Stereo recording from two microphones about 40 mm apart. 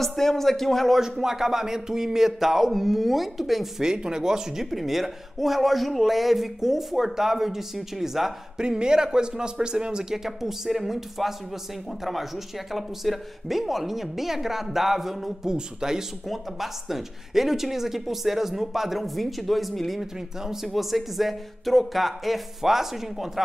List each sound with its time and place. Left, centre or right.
0.0 s speech: centre
0.9 s speech: centre
3.8 s a man's voice: centre
8.6 s speech: right
10.1 s a man's voice: centre